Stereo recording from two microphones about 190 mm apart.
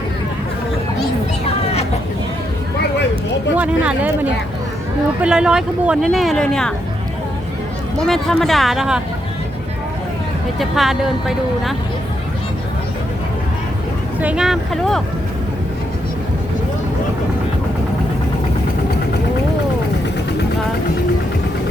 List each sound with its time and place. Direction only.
3.5 s speech: 5° right (ahead or behind)
8.0 s speech: centre (ahead or behind)
10.6 s speech: centre (ahead or behind)
14.2 s speech: 5° right (ahead or behind)